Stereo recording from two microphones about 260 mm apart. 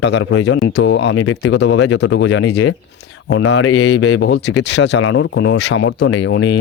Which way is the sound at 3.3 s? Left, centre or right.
Left.